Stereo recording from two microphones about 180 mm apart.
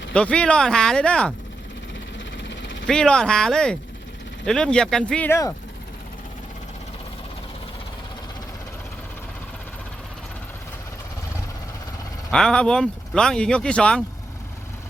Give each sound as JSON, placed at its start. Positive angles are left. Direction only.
{"t": 0.1, "sound": "speech", "side_deg": 5}
{"t": 2.4, "sound": "a sound", "side_deg": 90}
{"t": 2.8, "sound": "speech", "side_deg": 5}
{"t": 12.3, "sound": "speech", "side_deg": 5}